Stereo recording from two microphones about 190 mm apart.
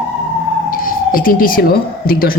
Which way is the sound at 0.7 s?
45° left (ahead or behind).